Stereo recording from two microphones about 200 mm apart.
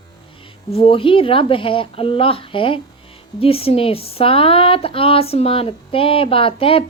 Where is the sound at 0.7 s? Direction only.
25° left (ahead or behind).